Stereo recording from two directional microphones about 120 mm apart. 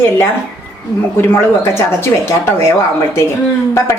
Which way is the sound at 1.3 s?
20° left (ahead or behind).